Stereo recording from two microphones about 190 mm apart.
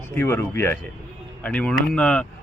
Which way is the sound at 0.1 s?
10° left (ahead or behind).